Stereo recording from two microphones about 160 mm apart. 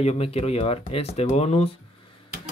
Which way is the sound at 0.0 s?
40° left (ahead or behind).